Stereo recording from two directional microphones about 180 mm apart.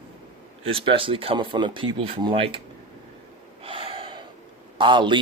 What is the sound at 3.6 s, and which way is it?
Gasp, 30° right (ahead or behind).